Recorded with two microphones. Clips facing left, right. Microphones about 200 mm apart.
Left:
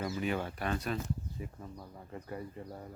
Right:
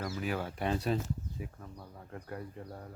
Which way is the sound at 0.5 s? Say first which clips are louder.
Right 3 dB; 25° right (ahead or behind).